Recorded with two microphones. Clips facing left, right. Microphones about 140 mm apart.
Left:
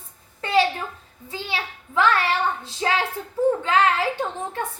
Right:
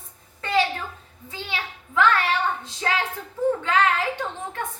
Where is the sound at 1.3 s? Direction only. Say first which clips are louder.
Left 2 dB; 30° left (ahead or behind).